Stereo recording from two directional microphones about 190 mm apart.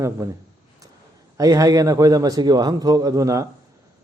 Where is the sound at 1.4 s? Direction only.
20° right (ahead or behind).